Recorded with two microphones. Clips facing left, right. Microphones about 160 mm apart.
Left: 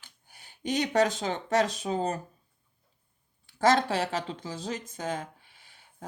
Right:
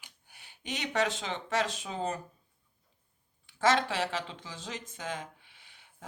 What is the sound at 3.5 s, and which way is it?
Speech, 40° left (ahead or behind).